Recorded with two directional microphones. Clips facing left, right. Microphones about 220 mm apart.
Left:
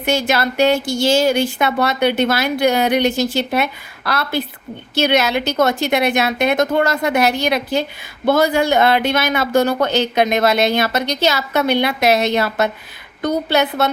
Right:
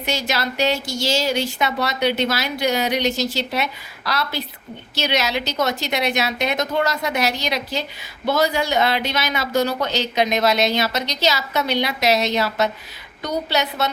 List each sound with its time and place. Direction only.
0.0 s a woman's voice: 55° left (ahead or behind)